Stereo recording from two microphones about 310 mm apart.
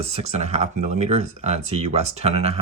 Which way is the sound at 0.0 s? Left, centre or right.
Centre.